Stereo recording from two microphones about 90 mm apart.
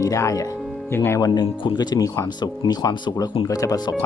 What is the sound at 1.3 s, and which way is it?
Speech, 50° left (ahead or behind).